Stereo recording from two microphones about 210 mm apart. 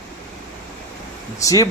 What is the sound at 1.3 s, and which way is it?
Speech, 15° left (ahead or behind).